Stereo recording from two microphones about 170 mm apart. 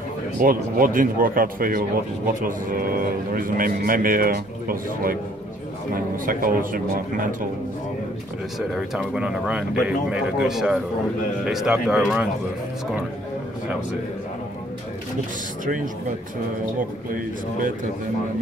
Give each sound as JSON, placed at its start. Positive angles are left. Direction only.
{"t": 0.4, "sound": "speech", "side_deg": -55}
{"t": 8.5, "sound": "speech", "side_deg": -5}
{"t": 15.6, "sound": "speech", "side_deg": -50}